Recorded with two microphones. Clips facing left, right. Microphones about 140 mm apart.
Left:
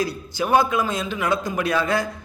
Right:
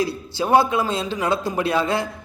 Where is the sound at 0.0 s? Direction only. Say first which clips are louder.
Right 1 dB; 25° right (ahead or behind).